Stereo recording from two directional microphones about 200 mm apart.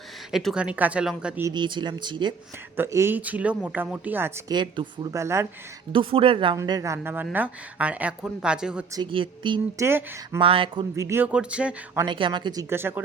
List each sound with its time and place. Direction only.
0.3 s speech: centre (ahead or behind)
1.5 s speech: 25° right (ahead or behind)
2.7 s speech: 10° right (ahead or behind)
4.5 s speech: 20° right (ahead or behind)
5.9 s speech: 25° right (ahead or behind); by 8.8 s 5° right (ahead or behind)
9.0 s speech: 25° right (ahead or behind)
9.8 s speech: 15° right (ahead or behind)
10.4 s speech: 25° right (ahead or behind)
10.9 s speech: 15° right (ahead or behind)
12.0 s speech: 25° right (ahead or behind)